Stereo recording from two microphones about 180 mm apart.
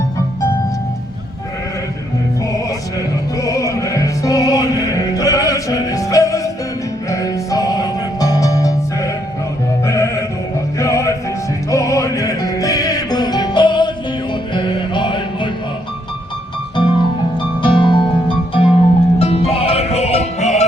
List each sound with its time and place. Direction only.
2.4 s music: 20° left (ahead or behind)
16.7 s music: 25° left (ahead or behind)